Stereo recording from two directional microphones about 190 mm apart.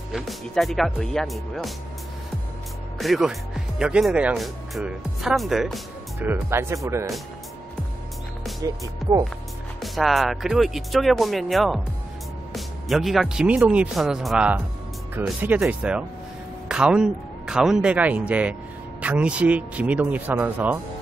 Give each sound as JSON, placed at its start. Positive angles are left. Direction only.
{"t": 0.1, "sound": "speech", "side_deg": 0}
{"t": 3.0, "sound": "speech", "side_deg": 0}
{"t": 6.1, "sound": "a man's voice", "side_deg": -15}
{"t": 8.5, "sound": "speech", "side_deg": -20}
{"t": 9.8, "sound": "a man's voice", "side_deg": 0}